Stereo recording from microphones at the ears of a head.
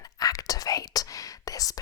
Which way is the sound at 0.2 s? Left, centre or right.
Left.